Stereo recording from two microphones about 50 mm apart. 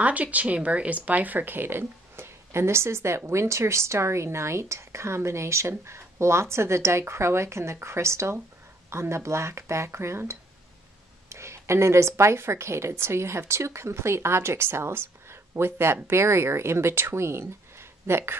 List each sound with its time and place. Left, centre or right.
0.0 s speech: right
11.2 s a sound: right
12.2 s speech: right